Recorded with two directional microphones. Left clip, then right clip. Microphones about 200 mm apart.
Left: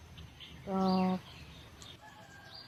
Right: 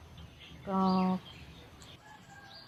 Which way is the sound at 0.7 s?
20° right (ahead or behind).